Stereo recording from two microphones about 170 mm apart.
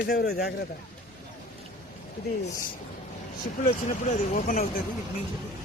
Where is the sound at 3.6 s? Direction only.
50° left (ahead or behind).